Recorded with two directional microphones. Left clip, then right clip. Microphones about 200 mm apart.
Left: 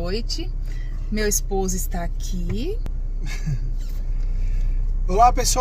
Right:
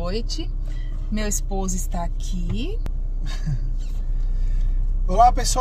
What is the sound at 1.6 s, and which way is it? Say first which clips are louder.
A woman's voice: left 2 dB; 40° left (ahead or behind).